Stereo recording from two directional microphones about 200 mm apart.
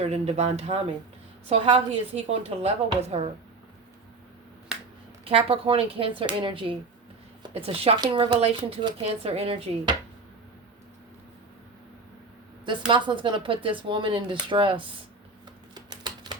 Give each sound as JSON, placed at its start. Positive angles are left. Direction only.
{"t": 0.0, "sound": "a woman's voice", "side_deg": -30}
{"t": 4.7, "sound": "finger snapping", "side_deg": -5}
{"t": 5.2, "sound": "speech", "side_deg": -30}
{"t": 13.1, "sound": "speech", "side_deg": -25}
{"t": 15.7, "sound": "typing", "side_deg": -20}